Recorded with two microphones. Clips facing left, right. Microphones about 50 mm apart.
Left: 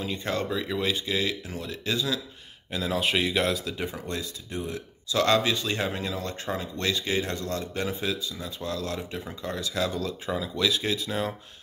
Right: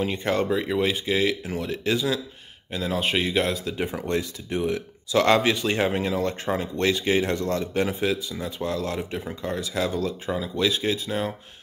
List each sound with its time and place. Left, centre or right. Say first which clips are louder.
0.0 s speech: right 5 dB; right
2.7 s speech: right 1 dB; centre
3.6 s speech: right 4 dB; right
3.9 s speech: right 7 dB; right
5.1 s speech: right 4 dB; right; by 11.3 s centre